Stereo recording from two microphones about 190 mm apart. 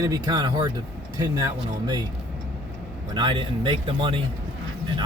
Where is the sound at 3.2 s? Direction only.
25° right (ahead or behind).